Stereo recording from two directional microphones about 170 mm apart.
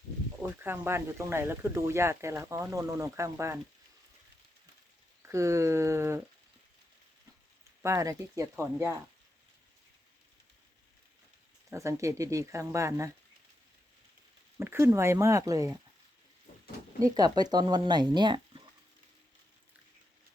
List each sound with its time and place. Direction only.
0.6 s speech: 15° right (ahead or behind)
5.2 s speech: 15° right (ahead or behind)
7.8 s speech: 15° right (ahead or behind)
11.7 s speech: 15° right (ahead or behind)
14.6 s speech: 15° right (ahead or behind)
17.0 s speech: 25° right (ahead or behind)